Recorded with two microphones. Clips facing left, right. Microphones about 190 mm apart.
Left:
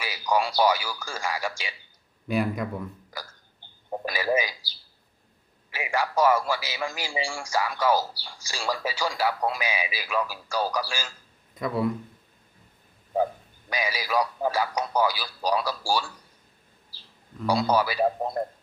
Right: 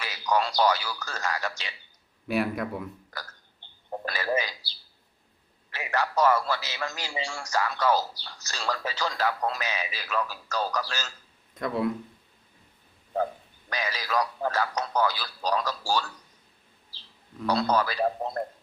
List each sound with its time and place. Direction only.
0.0 s a man's voice: 10° left (ahead or behind)
2.2 s speech: 5° right (ahead or behind)
3.1 s a sound: 10° left (ahead or behind)
5.7 s a man's voice: 10° left (ahead or behind)
13.7 s a man's voice: 10° left (ahead or behind)
16.9 s bird: 10° left (ahead or behind)
17.4 s a man's voice: 10° left (ahead or behind)